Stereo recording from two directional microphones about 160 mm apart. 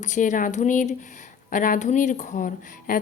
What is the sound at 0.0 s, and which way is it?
A woman's voice, 50° left (ahead or behind).